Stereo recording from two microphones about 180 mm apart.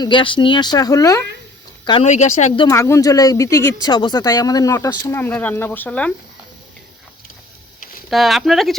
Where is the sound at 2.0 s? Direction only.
40° left (ahead or behind).